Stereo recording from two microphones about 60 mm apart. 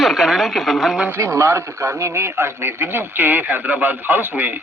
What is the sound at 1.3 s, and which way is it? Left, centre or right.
A man's voice, right.